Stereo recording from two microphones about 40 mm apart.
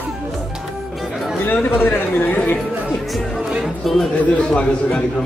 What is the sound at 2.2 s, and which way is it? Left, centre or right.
Speech, left.